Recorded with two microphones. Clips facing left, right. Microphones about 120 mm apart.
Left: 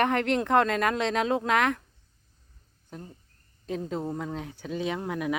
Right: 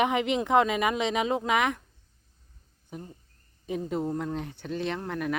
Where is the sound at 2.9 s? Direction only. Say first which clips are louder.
Right 1 dB; 10° right (ahead or behind).